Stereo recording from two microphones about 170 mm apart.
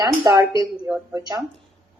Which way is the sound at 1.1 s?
20° right (ahead or behind).